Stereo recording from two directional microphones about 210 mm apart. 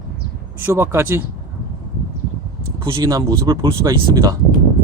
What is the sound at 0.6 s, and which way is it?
Speech, 10° right (ahead or behind).